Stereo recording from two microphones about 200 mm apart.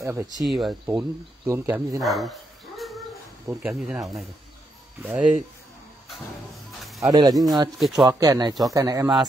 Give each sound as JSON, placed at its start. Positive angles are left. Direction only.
{"t": 0.0, "sound": "speech", "side_deg": -15}
{"t": 0.5, "sound": "speech", "side_deg": 0}
{"t": 2.0, "sound": "speech", "side_deg": 0}
{"t": 3.4, "sound": "speech", "side_deg": -5}
{"t": 5.0, "sound": "speech", "side_deg": -5}
{"t": 7.0, "sound": "speech", "side_deg": -20}
{"t": 7.7, "sound": "speech", "side_deg": 0}
{"t": 8.1, "sound": "speech", "side_deg": -20}